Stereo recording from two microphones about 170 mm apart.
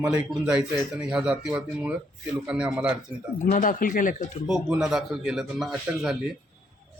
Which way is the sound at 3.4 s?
50° left (ahead or behind).